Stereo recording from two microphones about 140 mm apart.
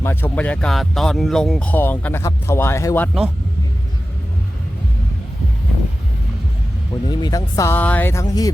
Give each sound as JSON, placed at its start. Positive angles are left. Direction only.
{"t": 0.0, "sound": "speech", "side_deg": 15}
{"t": 7.1, "sound": "speech", "side_deg": 30}